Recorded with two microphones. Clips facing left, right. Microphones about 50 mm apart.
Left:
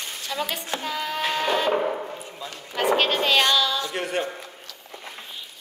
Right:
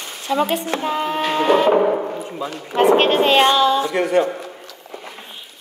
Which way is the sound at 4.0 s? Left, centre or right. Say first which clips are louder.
Right 10 dB; right.